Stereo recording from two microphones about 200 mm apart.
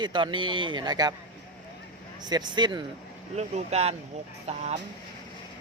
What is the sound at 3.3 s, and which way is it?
Speech, 35° right (ahead or behind).